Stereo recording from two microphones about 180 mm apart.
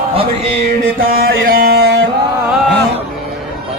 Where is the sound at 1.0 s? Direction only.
55° right (ahead or behind); by 2.0 s 70° right (ahead or behind).